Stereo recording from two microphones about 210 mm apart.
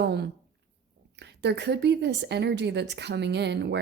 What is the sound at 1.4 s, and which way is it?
A woman's voice, 55° right (ahead or behind).